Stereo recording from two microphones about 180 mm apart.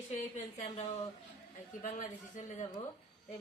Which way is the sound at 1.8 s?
45° left (ahead or behind).